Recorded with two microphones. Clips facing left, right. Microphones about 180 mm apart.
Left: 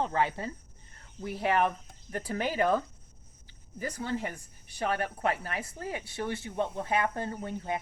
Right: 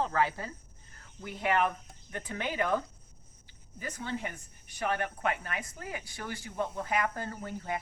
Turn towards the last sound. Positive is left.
turn(degrees=25)  # may be behind; listen again after turning